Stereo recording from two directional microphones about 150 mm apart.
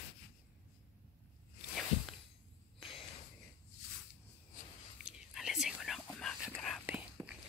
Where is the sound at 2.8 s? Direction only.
35° left (ahead or behind).